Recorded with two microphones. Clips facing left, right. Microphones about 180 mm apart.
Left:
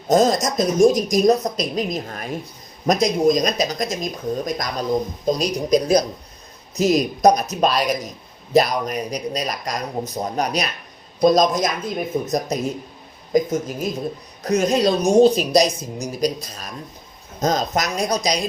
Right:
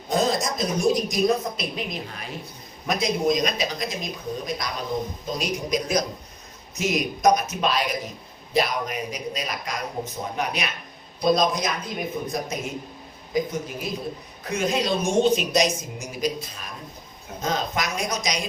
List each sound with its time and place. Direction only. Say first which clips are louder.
0.1 s a woman's voice: left 7 dB; 45° left (ahead or behind)